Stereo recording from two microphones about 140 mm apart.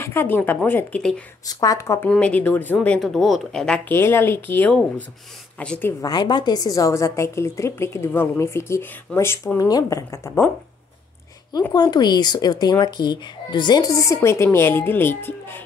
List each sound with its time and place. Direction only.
0.0 s speech: 15° left (ahead or behind)
1.4 s a woman's voice: 25° left (ahead or behind)
2.0 s speech: 10° left (ahead or behind)
3.9 s a woman's voice: 15° left (ahead or behind)
11.7 s a woman's voice: 30° left (ahead or behind)